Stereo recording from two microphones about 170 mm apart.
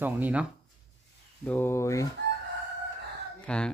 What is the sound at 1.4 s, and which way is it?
Speech, 10° left (ahead or behind).